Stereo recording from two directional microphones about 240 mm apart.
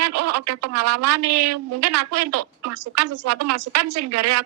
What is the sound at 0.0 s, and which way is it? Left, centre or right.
Speech, right.